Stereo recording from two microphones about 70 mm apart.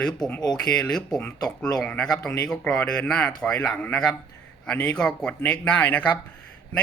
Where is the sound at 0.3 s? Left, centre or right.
Centre.